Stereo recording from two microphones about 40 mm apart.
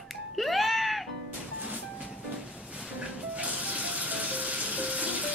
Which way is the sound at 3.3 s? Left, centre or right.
Right.